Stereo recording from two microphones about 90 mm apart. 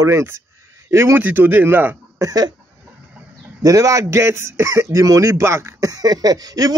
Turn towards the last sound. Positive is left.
turn(degrees=-45)  # may be behind; listen again after turning